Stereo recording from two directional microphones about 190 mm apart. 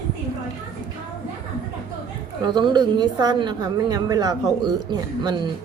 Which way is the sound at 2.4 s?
25° right (ahead or behind).